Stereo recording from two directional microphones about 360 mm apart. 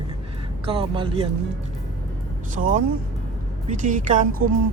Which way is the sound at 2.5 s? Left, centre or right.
Right.